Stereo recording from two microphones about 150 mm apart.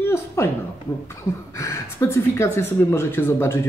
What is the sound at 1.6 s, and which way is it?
Speech, 20° left (ahead or behind).